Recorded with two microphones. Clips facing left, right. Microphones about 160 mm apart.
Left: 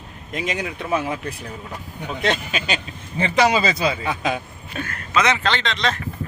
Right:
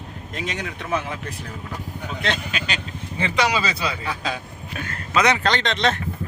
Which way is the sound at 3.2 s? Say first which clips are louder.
Left 4 dB; 40° left (ahead or behind).